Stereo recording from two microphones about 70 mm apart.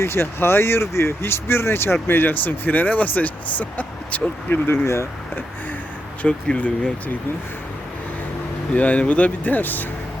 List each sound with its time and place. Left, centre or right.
0.0 s speech: left
6.2 s speech: centre
8.7 s speech: centre